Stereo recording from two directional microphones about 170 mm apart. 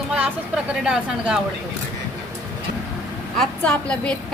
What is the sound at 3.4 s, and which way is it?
Speech, 5° left (ahead or behind).